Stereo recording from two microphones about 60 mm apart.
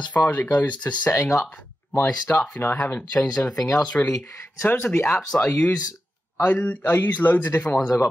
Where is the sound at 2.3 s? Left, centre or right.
Left.